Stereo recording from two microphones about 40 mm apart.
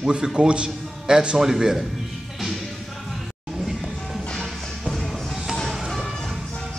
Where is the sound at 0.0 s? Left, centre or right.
Centre.